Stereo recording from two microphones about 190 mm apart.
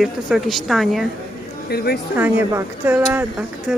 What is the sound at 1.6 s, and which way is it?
Speech, 55° left (ahead or behind).